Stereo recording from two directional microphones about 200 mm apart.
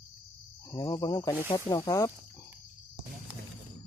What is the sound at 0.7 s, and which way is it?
Speech, 20° left (ahead or behind).